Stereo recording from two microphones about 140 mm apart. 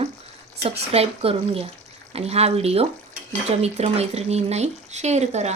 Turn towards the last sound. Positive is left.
turn(degrees=-55)  # may be behind; listen again after turning